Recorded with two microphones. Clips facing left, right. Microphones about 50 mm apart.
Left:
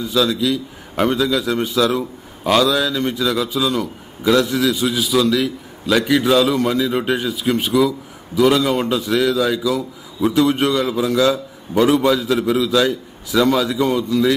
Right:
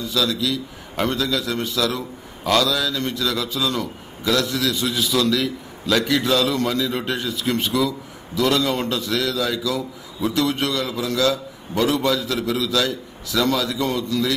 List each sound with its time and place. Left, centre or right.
0.0 s a man's voice: left
4.2 s a man's voice: centre